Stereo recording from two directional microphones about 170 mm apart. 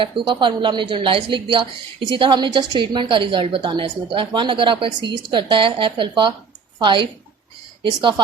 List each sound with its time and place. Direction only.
0.0 s a woman's voice: 30° right (ahead or behind)